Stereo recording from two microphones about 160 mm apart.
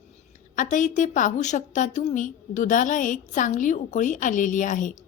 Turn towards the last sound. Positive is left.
turn(degrees=55)  # may be behind; listen again after turning